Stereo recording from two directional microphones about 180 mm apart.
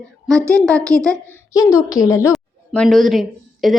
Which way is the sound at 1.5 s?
20° left (ahead or behind).